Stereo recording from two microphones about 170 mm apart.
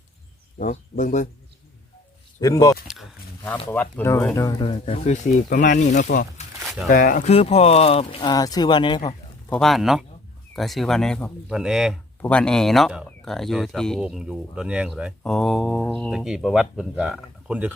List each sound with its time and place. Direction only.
0.6 s speech: 50° left (ahead or behind)
2.4 s speech: 20° left (ahead or behind)
2.8 s a sound: centre (ahead or behind)
3.7 s speech: 10° left (ahead or behind)
4.7 s speech: 40° left (ahead or behind)
9.5 s speech: centre (ahead or behind)